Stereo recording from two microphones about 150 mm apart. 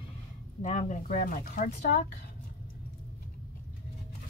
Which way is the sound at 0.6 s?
55° left (ahead or behind).